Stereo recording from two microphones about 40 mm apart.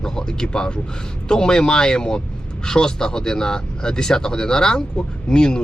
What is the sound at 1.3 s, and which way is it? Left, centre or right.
Speech, centre.